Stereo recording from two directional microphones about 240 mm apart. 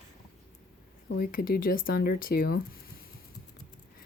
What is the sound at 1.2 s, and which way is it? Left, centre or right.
Speech, left.